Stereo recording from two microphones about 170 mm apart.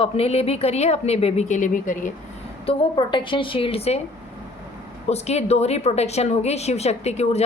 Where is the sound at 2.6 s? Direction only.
30° left (ahead or behind).